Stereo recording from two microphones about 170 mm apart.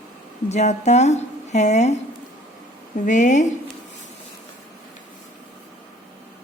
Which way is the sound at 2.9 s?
45° left (ahead or behind).